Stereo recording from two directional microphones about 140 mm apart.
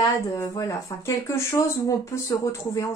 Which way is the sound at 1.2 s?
20° left (ahead or behind).